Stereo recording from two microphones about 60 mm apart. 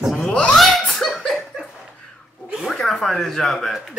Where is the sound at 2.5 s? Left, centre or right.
Centre.